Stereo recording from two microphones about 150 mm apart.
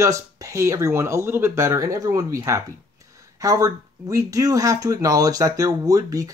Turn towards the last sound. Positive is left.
turn(degrees=-20)  # may be behind; listen again after turning